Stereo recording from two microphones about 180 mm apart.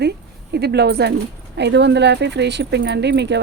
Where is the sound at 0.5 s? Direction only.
65° right (ahead or behind).